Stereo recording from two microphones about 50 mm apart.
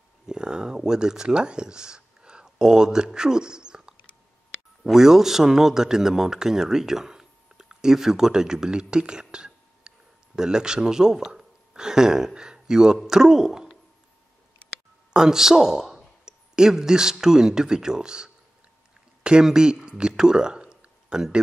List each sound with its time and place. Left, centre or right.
0.3 s a man's voice: centre
15.1 s speech: centre
19.4 s speech: centre